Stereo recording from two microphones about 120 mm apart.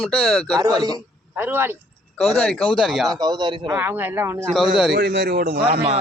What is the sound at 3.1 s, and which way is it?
Speech, 35° right (ahead or behind).